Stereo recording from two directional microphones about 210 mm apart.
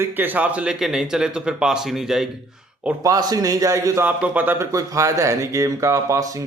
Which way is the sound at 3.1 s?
20° right (ahead or behind).